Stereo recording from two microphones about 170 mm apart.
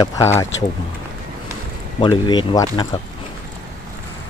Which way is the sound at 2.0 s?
30° left (ahead or behind).